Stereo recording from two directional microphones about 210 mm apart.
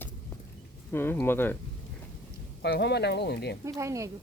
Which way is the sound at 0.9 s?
10° left (ahead or behind).